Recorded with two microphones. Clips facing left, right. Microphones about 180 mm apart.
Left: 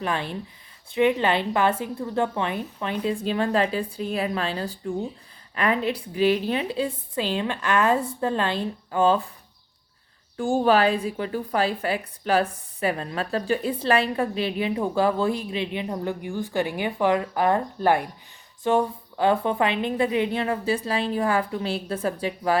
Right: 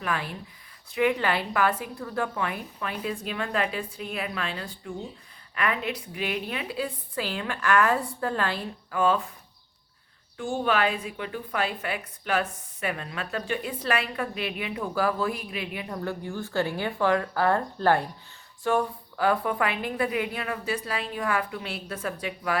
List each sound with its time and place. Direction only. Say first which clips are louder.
0.0 s a woman's voice: left 3 dB; 25° left (ahead or behind)
10.3 s a woman's voice: left 6 dB; 40° left (ahead or behind)